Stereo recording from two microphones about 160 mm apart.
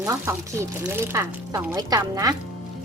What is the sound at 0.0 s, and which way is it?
A woman's voice, 20° right (ahead or behind).